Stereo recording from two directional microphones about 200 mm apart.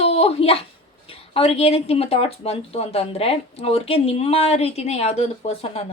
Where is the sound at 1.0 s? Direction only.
30° left (ahead or behind).